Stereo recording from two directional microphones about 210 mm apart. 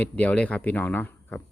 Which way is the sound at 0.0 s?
5° left (ahead or behind).